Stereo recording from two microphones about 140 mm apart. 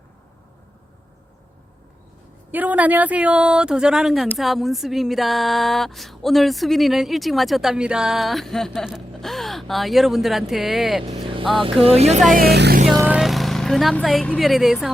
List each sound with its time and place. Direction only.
2.5 s speech: 10° right (ahead or behind)
4.4 s a sound: centre (ahead or behind)
11.6 s speech: 45° right (ahead or behind)
12.3 s music: 80° right
13.1 s speech: 5° right (ahead or behind)